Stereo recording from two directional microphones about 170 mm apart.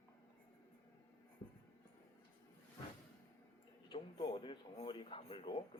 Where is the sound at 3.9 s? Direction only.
30° left (ahead or behind).